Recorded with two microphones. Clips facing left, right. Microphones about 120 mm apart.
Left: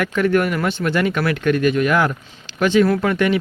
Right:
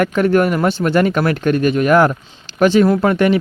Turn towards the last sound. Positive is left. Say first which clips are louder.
# right 4 dB
turn(degrees=-40)  # may be behind; listen again after turning